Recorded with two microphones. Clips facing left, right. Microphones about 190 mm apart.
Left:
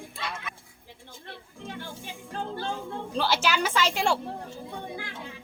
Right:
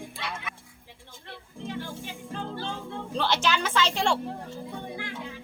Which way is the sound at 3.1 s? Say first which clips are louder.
Even; 5° left (ahead or behind).